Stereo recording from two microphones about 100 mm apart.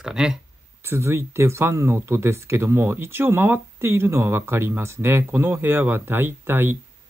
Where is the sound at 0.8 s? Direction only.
25° right (ahead or behind).